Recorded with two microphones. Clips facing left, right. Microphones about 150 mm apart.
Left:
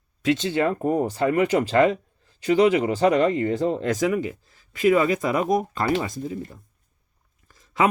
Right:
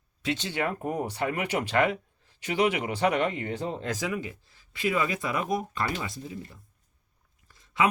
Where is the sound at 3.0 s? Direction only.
40° left (ahead or behind).